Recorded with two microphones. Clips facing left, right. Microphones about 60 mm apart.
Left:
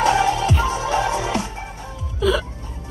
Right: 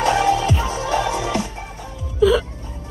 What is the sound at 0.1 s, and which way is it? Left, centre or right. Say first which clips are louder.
Music: right 1 dB; centre.